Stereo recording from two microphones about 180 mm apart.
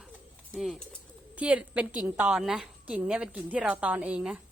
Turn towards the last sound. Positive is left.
turn(degrees=-5)  # may be behind; listen again after turning